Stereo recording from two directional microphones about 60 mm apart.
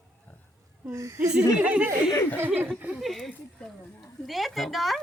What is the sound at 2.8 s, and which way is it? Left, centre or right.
Speech, right.